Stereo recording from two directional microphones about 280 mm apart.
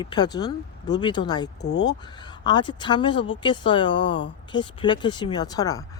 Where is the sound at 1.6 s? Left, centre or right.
Left.